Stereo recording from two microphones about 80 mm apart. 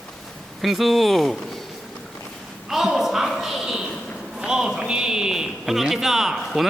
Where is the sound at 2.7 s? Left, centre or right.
Centre.